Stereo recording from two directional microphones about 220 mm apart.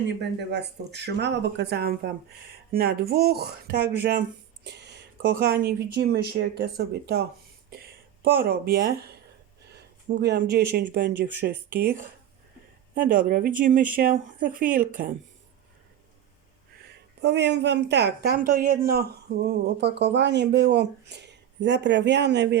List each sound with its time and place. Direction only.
0.1 s speech: 50° right (ahead or behind)
9.7 s a sound: 50° right (ahead or behind)
10.7 s speech: 45° right (ahead or behind)
17.2 s speech: 50° right (ahead or behind)